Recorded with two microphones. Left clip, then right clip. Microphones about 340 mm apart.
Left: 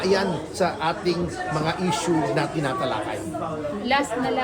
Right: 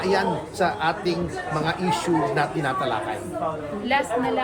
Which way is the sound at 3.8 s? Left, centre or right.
Left.